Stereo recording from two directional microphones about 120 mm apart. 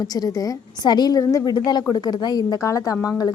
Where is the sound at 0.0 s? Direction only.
30° left (ahead or behind).